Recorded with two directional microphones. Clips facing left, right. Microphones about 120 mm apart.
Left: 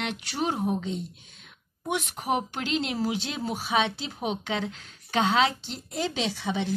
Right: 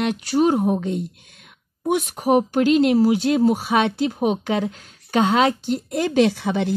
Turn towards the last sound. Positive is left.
turn(degrees=-60)  # may be behind; listen again after turning